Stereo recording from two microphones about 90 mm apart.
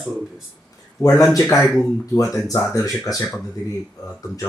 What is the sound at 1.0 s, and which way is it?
Speech, 35° left (ahead or behind).